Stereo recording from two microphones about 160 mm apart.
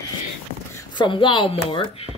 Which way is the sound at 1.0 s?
30° left (ahead or behind).